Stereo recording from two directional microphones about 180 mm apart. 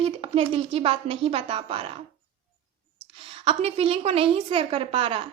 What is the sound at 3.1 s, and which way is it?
A woman's voice, 30° right (ahead or behind).